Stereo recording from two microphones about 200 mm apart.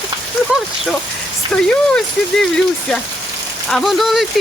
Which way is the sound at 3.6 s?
Centre (ahead or behind).